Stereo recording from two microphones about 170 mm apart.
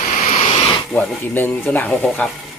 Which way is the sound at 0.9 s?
10° left (ahead or behind).